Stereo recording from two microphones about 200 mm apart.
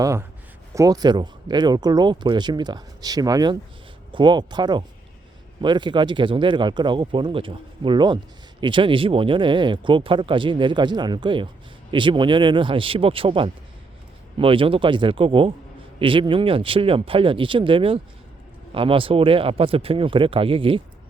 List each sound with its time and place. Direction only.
0.0 s speech: 15° right (ahead or behind)